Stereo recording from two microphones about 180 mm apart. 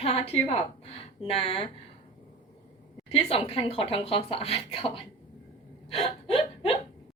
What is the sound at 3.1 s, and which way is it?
A woman's voice, 35° left (ahead or behind).